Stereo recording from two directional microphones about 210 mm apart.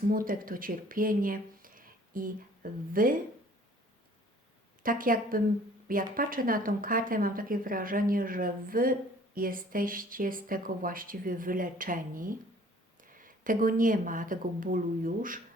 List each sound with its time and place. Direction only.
0.1 s a woman's voice: 40° right (ahead or behind)
4.8 s a woman's voice: 40° right (ahead or behind)